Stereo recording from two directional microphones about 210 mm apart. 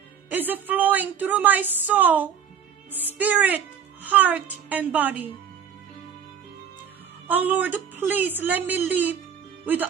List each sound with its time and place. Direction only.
0.3 s a woman's voice: 10° right (ahead or behind)
7.3 s a woman's voice: 10° right (ahead or behind)